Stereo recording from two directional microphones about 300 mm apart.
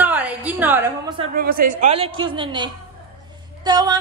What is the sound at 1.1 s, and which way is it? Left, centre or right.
A woman's voice, right.